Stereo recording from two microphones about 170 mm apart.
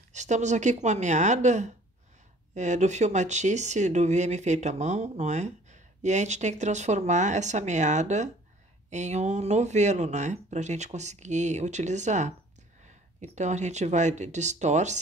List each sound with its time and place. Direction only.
0.1 s speech: 45° right (ahead or behind)